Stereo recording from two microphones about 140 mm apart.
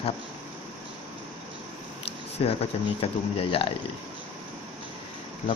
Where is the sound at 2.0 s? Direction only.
45° left (ahead or behind).